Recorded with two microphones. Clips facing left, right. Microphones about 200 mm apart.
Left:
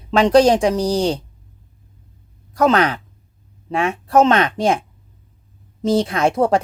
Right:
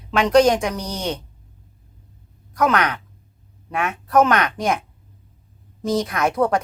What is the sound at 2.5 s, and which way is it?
A woman's voice, 30° left (ahead or behind).